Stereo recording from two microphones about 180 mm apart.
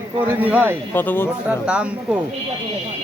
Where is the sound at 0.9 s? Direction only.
10° left (ahead or behind).